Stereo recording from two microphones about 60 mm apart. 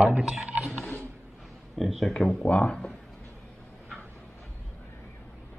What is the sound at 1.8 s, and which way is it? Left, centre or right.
Speech, centre.